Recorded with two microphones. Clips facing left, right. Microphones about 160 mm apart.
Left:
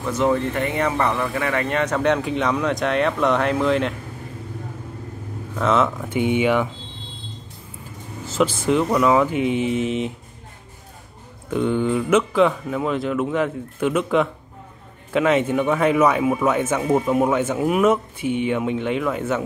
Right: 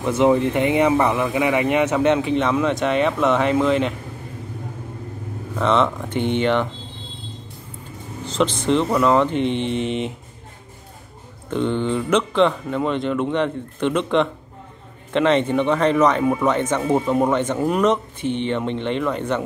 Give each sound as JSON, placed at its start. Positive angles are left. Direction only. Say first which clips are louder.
{"t": 0.0, "sound": "speech", "louder": "right 4 dB", "side_deg": -20}
{"t": 5.6, "sound": "speech", "louder": "right 1 dB", "side_deg": 5}
{"t": 8.3, "sound": "speech", "louder": "even", "side_deg": 5}
{"t": 11.5, "sound": "speech", "louder": "left 1 dB", "side_deg": 5}